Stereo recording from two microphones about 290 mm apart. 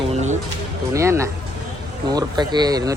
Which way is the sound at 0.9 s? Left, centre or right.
Centre.